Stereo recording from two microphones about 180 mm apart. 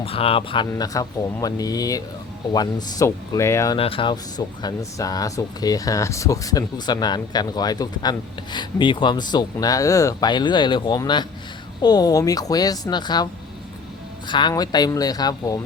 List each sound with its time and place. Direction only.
0.0 s speech: 30° left (ahead or behind); by 3.8 s 15° left (ahead or behind)
3.8 s speech: 30° left (ahead or behind)
14.3 s speech: 25° left (ahead or behind)